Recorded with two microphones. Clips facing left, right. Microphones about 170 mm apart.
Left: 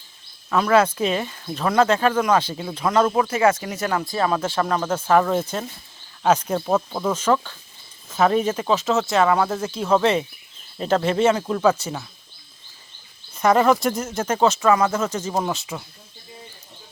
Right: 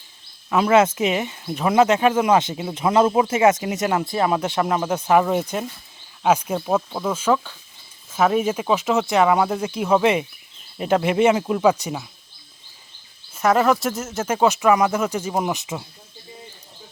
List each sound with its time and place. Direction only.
0.5 s speech: 25° right (ahead or behind)
13.3 s speech: centre (ahead or behind); by 15.9 s 20° right (ahead or behind)